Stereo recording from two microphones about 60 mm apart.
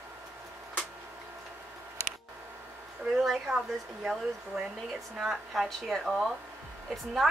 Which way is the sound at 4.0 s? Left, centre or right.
Centre.